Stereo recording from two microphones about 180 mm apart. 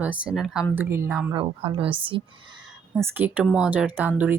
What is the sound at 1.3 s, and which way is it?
Speech, 30° right (ahead or behind).